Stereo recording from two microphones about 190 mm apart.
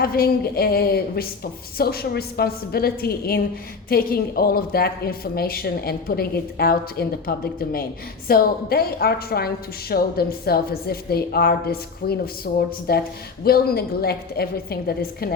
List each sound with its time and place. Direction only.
0.0 s a woman's voice: 50° left (ahead or behind)